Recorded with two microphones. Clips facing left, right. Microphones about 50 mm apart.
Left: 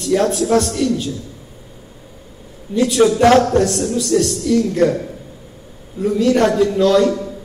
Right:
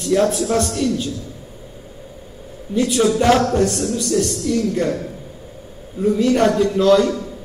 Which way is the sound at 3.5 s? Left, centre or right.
Left.